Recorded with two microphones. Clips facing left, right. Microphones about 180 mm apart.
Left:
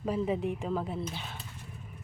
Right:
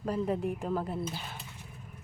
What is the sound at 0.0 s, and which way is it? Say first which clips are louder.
Speech: left 1 dB; centre (ahead or behind).